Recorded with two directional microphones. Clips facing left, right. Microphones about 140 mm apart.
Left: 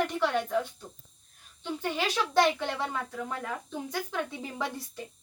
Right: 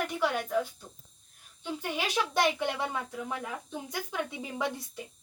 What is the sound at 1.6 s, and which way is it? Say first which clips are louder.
Speech: left 2 dB; 10° right (ahead or behind).